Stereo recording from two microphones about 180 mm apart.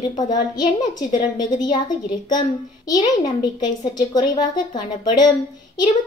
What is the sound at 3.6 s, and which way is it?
A woman's voice, 25° left (ahead or behind).